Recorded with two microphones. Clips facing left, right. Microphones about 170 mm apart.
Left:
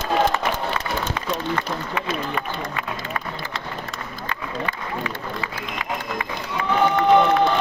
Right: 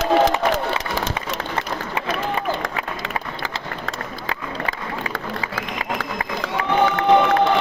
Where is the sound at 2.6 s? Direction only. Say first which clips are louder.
Right 2 dB; 90° right.